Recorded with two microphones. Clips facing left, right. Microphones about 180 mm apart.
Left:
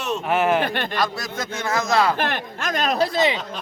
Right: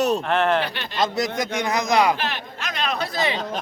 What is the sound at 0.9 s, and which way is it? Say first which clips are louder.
Speech: right 3 dB; 20° right (ahead or behind).